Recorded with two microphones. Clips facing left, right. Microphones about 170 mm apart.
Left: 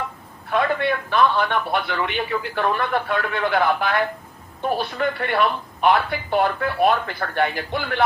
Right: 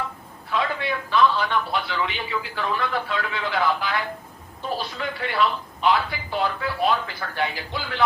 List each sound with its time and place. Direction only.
0.5 s a man's voice: 55° left (ahead or behind)